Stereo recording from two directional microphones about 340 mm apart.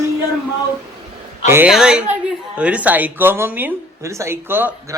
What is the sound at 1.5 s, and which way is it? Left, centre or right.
A woman's voice, centre.